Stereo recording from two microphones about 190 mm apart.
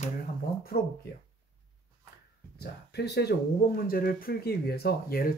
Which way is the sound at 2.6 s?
60° left (ahead or behind).